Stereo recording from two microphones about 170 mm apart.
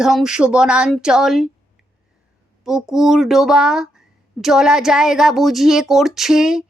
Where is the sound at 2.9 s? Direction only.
Centre (ahead or behind).